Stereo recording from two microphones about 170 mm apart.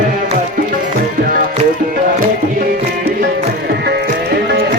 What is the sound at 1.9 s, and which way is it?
Tabla, 55° right (ahead or behind).